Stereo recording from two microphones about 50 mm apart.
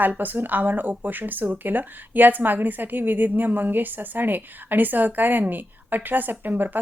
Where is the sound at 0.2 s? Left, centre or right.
Right.